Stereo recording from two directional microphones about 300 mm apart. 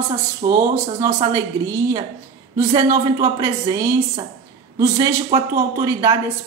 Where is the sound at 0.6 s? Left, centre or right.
Centre.